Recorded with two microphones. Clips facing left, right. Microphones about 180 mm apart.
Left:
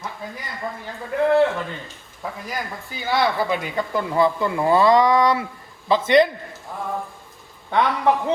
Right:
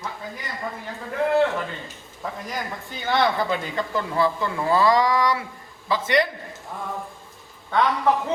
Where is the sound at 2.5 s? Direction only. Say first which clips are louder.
Left 1 dB; 5° left (ahead or behind); by 6.2 s 25° left (ahead or behind).